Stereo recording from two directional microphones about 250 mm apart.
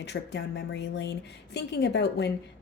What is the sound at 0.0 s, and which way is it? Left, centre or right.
A woman's voice, left.